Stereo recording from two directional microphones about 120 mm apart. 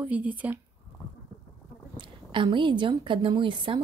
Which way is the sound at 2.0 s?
45° right (ahead or behind).